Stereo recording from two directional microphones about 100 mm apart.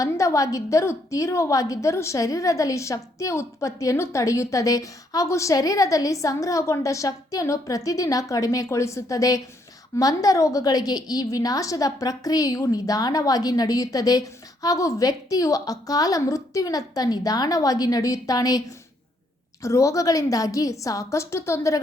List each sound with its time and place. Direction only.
0.0 s a woman's voice: 35° left (ahead or behind)
19.6 s a woman's voice: 30° left (ahead or behind)